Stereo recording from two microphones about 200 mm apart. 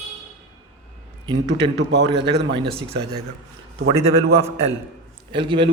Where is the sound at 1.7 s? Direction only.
60° right (ahead or behind).